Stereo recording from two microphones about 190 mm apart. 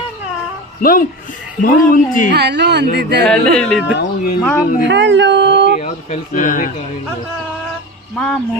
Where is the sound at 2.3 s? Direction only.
60° right (ahead or behind).